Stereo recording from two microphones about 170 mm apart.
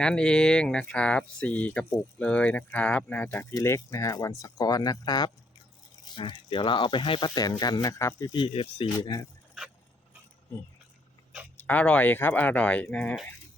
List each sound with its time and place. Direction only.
0.0 s speech: 5° left (ahead or behind); by 9.2 s 25° left (ahead or behind)
11.5 s speech: 10° left (ahead or behind)